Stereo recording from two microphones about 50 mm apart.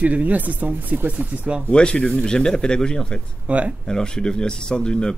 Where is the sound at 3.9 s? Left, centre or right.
Centre.